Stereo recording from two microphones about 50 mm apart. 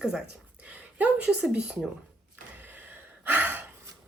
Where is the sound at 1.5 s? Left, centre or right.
Right.